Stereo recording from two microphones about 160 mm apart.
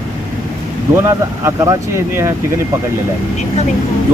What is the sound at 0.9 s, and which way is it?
Speech, 15° right (ahead or behind).